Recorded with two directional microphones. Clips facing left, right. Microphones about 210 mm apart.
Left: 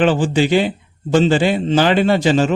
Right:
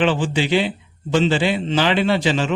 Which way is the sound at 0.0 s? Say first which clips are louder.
Left 4 dB; 45° left (ahead or behind).